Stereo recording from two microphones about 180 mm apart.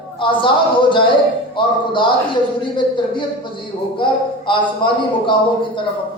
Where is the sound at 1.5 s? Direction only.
25° left (ahead or behind).